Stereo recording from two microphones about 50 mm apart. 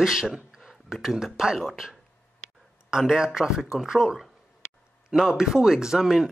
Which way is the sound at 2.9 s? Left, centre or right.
Centre.